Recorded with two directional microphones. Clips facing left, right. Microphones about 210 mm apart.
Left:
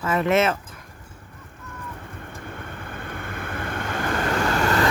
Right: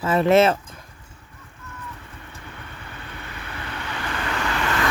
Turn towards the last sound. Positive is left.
turn(degrees=40)  # may be behind; listen again after turning